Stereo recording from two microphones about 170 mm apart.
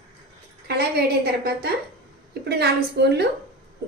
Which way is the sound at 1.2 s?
70° right (ahead or behind).